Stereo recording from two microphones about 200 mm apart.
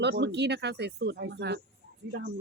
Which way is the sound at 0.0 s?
55° right (ahead or behind).